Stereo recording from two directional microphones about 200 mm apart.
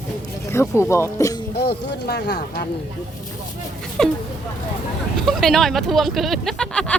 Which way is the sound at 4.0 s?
5° left (ahead or behind).